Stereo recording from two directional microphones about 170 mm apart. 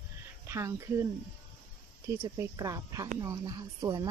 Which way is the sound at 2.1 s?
15° right (ahead or behind).